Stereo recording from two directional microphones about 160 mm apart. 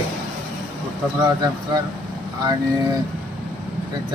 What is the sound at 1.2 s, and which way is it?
Speech, 25° right (ahead or behind).